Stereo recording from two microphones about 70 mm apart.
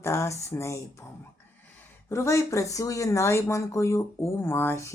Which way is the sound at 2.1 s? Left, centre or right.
Left.